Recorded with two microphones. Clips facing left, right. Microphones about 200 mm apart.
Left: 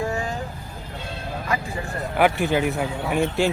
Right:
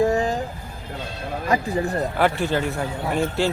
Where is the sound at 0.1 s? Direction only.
35° right (ahead or behind).